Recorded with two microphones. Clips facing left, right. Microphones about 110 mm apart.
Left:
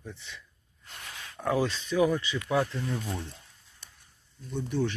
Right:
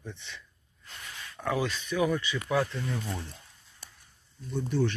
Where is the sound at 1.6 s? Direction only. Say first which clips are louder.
Left 3 dB; 25° left (ahead or behind).